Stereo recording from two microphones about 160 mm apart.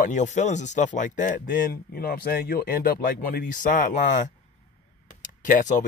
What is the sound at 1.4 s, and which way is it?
Speech, 70° left (ahead or behind).